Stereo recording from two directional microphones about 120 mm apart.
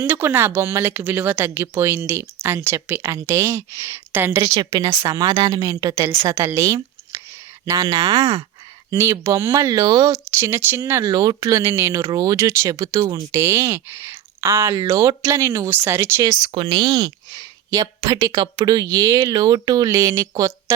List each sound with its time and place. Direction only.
0.0 s speech: 20° right (ahead or behind)
10.4 s speech: 20° right (ahead or behind)
11.0 s speech: 35° right (ahead or behind)
16.5 s speech: 45° right (ahead or behind); by 20.7 s 30° right (ahead or behind)